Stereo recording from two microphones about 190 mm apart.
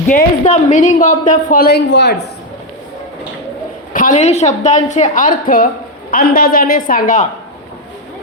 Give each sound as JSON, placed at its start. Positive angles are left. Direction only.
{"t": 0.1, "sound": "a woman's voice", "side_deg": 40}
{"t": 3.9, "sound": "a woman's voice", "side_deg": 40}